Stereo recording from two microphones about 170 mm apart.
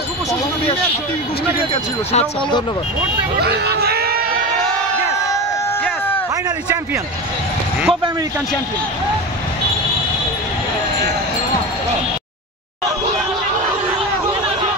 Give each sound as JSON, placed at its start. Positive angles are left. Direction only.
{"t": 1.7, "sound": "speech", "side_deg": 30}
{"t": 3.3, "sound": "crowd", "side_deg": -70}